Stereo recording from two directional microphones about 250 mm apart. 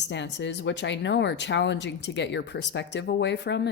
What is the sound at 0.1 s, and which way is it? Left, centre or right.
Speech, left.